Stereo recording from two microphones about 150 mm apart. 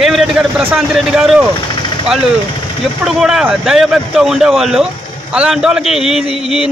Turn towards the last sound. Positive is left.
turn(degrees=-5)  # may be behind; listen again after turning